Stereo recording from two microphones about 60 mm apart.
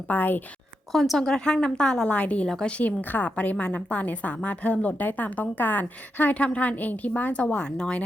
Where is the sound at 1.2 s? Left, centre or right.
Centre.